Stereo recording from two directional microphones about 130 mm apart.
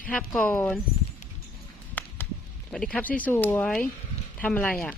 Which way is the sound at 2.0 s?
10° left (ahead or behind).